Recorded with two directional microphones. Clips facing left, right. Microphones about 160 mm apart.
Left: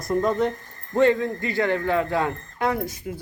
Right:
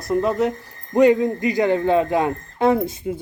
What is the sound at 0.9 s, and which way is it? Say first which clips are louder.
Speech: right 4 dB; 15° right (ahead or behind).